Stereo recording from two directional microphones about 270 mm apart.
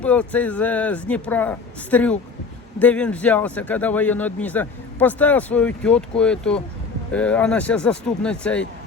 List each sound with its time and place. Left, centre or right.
0.0 s a man's voice: centre